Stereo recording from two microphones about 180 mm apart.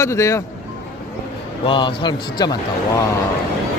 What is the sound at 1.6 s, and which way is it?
Speech, 30° left (ahead or behind).